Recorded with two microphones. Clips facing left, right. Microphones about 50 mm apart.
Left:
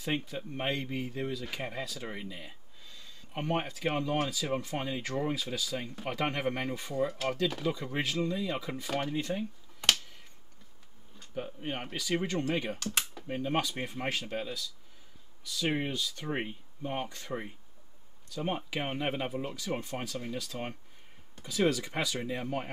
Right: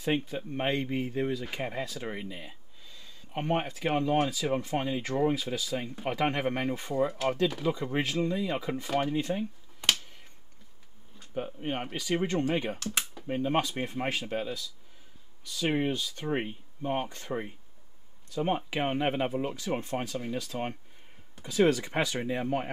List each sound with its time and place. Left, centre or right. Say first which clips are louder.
0.0 s speech: right 4 dB; centre
7.7 s speech: right 3 dB; right
11.3 s speech: right 4 dB; centre
15.9 s speech: right 3 dB; right
16.3 s speech: right 7 dB; centre; by 20.2 s right
20.2 s speech: right 4 dB; centre